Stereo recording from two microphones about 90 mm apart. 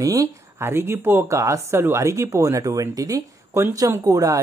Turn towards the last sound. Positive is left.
turn(degrees=-40)  # may be behind; listen again after turning